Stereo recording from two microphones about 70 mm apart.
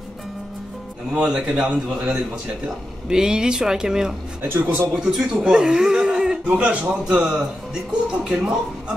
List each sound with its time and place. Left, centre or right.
1.1 s a man's voice: centre
4.4 s a man's voice: right
5.1 s a man's voice: centre